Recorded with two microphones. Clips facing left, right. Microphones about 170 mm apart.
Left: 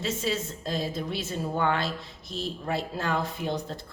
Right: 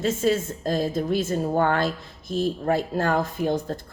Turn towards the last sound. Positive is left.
turn(degrees=-45)  # may be behind; listen again after turning